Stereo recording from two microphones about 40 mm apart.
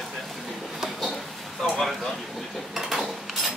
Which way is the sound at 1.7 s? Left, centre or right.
Centre.